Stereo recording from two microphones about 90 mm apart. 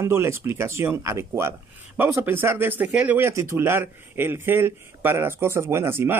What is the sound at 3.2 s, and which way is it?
Speech, 30° right (ahead or behind).